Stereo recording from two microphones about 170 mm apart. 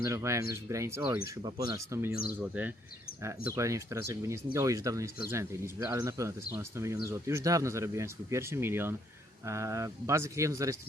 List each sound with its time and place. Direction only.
0.0 s speech: 15° right (ahead or behind)
1.4 s speech: 25° right (ahead or behind)